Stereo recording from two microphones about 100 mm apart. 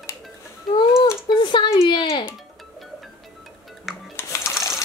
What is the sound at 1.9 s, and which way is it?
Speech, 55° left (ahead or behind).